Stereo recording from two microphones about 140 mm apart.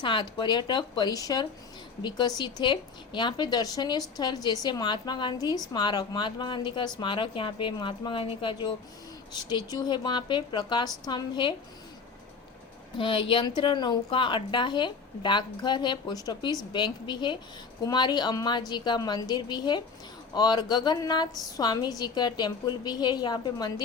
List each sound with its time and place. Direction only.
0.0 s a woman's voice: 35° left (ahead or behind)
13.0 s a woman's voice: 35° left (ahead or behind)